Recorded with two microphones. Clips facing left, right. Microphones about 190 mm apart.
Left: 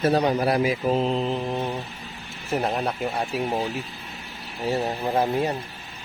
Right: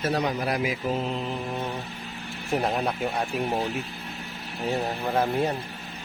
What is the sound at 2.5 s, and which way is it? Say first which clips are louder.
Speech: left 1 dB; 5° left (ahead or behind).